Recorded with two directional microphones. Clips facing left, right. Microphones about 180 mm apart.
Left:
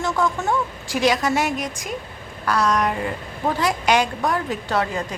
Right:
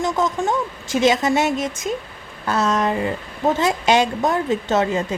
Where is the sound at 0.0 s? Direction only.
20° right (ahead or behind).